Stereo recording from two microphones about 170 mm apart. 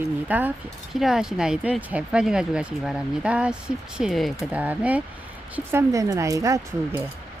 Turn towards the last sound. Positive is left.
turn(degrees=-15)  # may be behind; listen again after turning